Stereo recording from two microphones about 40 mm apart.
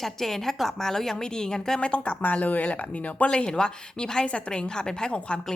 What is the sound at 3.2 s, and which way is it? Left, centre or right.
A woman's voice, left.